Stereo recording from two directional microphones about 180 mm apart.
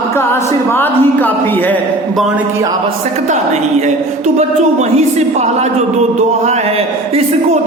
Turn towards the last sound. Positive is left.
turn(degrees=-35)  # may be behind; listen again after turning